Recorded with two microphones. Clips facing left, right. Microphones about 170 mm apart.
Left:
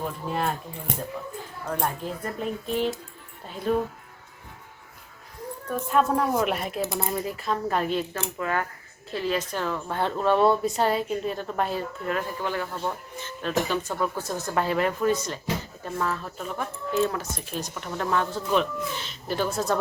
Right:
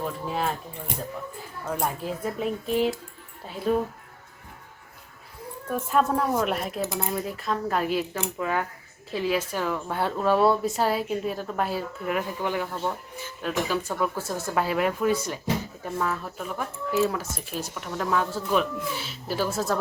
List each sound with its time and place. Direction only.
0.0 s keys jangling: centre (ahead or behind)
1.6 s speech: 5° right (ahead or behind)
5.6 s speech: centre (ahead or behind)